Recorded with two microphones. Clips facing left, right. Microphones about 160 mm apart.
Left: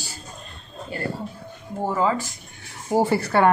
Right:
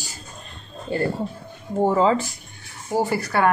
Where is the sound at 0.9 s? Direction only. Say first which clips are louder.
Right 6 dB; 25° right (ahead or behind).